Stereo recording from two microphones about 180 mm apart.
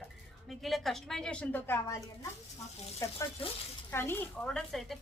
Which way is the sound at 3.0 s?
15° left (ahead or behind).